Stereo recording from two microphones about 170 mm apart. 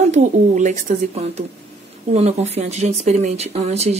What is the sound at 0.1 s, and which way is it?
Speech, 45° right (ahead or behind).